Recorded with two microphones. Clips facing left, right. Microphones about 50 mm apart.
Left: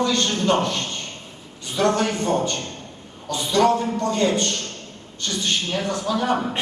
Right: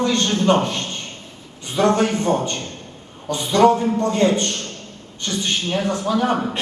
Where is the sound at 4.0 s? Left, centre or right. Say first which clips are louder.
Right 3 dB; centre.